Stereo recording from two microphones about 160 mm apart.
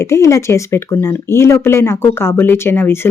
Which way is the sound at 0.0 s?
15° left (ahead or behind).